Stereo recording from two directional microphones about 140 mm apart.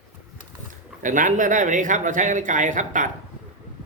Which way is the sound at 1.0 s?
70° right (ahead or behind).